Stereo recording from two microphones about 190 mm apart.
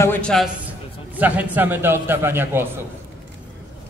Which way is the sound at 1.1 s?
10° right (ahead or behind).